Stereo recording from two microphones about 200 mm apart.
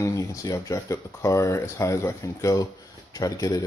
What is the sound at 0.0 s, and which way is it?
Speech, 15° left (ahead or behind).